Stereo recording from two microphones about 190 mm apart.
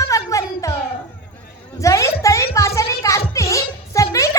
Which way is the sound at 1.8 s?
15° left (ahead or behind).